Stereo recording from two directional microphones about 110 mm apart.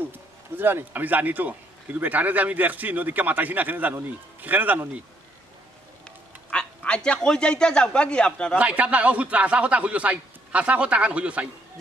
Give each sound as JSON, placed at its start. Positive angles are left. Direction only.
{"t": 0.1, "sound": "a man's voice", "side_deg": -20}
{"t": 6.0, "sound": "a man's voice", "side_deg": 10}
{"t": 8.5, "sound": "a man's voice", "side_deg": -10}